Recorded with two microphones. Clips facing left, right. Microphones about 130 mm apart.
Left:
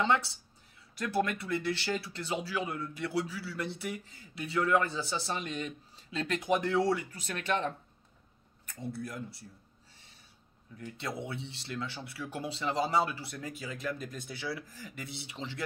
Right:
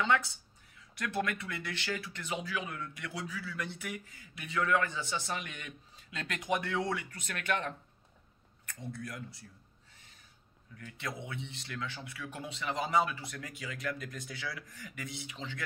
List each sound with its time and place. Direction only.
0.0 s speech: 30° left (ahead or behind)
10.8 s speech: 30° left (ahead or behind)